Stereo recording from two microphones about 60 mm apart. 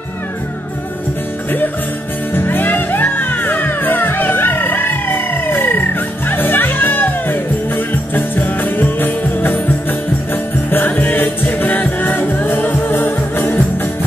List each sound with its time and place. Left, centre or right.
2.3 s music: left